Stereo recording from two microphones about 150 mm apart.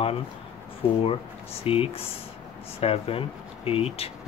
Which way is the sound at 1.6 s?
40° left (ahead or behind).